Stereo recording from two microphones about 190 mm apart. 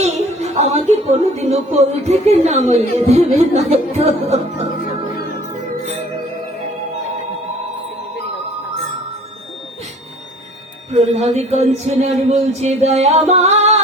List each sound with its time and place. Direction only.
0.0 s speech: 35° right (ahead or behind)
11.3 s speech: 35° right (ahead or behind)